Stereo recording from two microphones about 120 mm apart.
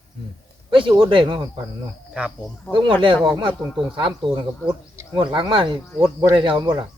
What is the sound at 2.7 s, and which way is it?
Speech, 45° right (ahead or behind).